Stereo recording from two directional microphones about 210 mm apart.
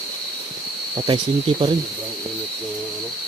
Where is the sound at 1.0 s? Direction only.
20° right (ahead or behind).